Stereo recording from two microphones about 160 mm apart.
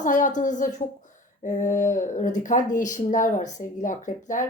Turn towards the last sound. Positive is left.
turn(degrees=55)  # may be behind; listen again after turning